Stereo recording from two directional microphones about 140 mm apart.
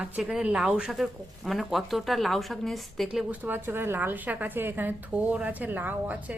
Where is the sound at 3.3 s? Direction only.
15° right (ahead or behind).